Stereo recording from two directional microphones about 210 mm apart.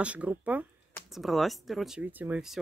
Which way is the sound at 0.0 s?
5° right (ahead or behind).